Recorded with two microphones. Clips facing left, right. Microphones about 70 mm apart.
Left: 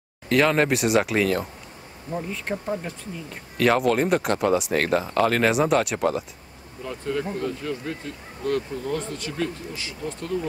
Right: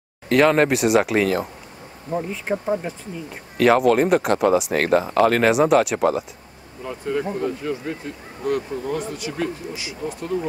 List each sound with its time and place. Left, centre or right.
0.3 s speech: centre
2.0 s speech: centre
3.5 s speech: centre
6.9 s speech: centre